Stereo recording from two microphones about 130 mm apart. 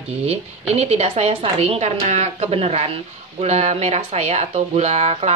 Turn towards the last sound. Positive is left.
turn(degrees=-50)  # may be behind; listen again after turning